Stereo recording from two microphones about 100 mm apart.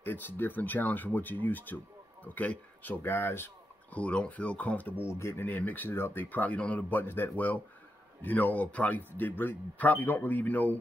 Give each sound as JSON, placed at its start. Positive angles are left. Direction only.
{"t": 0.0, "sound": "speech", "side_deg": 20}